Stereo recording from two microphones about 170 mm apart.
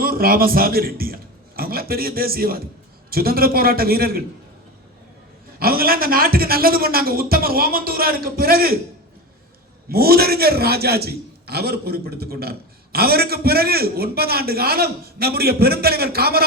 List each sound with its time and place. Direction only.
0.0 s a man's voice: 60° right (ahead or behind)
5.5 s a man's voice: 60° right (ahead or behind)
9.9 s a man's voice: 65° right (ahead or behind)